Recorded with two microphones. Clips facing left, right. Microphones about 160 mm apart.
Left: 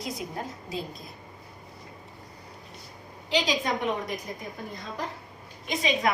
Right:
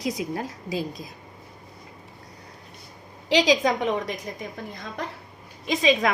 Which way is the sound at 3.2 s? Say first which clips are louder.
Right 7 dB; 90° right.